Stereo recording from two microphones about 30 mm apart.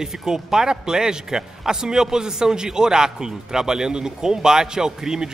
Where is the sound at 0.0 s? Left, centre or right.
Centre.